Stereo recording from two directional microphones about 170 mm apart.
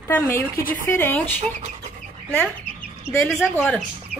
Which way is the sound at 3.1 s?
15° left (ahead or behind).